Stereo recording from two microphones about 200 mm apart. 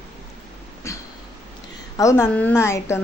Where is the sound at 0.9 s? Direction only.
15° left (ahead or behind).